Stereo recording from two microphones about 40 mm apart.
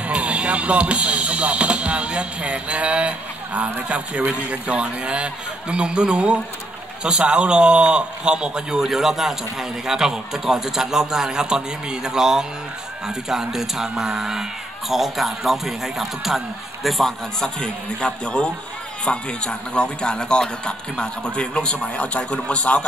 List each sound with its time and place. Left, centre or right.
0.0 s a man's voice: right
8.8 s a man's voice: centre
17.8 s a man's voice: left